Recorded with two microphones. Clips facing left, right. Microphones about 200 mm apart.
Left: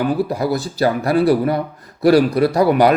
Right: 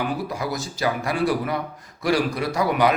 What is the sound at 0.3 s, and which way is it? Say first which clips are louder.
Speech: left 8 dB; 35° left (ahead or behind).